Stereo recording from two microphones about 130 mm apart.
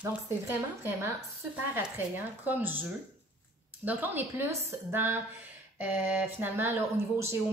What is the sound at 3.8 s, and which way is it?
A woman's voice, 15° right (ahead or behind).